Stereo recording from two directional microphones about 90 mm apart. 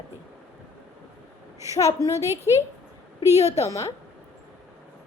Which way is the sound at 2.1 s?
30° right (ahead or behind).